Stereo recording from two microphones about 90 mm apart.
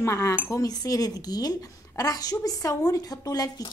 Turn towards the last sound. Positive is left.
turn(degrees=45)  # may be behind; listen again after turning